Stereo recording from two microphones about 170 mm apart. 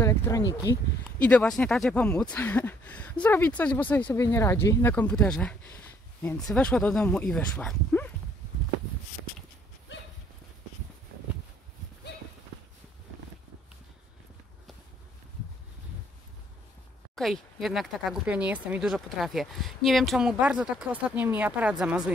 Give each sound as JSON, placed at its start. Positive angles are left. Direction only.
{"t": 0.0, "sound": "speech", "side_deg": 15}
{"t": 1.2, "sound": "speech", "side_deg": 5}
{"t": 9.9, "sound": "clip-clop", "side_deg": 90}
{"t": 17.1, "sound": "speech", "side_deg": 0}